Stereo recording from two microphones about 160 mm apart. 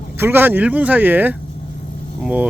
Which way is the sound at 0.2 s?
15° right (ahead or behind).